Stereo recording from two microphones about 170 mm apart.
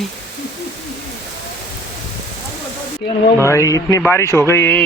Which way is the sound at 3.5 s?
20° left (ahead or behind).